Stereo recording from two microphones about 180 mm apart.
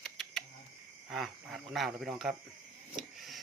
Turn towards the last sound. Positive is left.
turn(degrees=0)  # may be behind; listen again after turning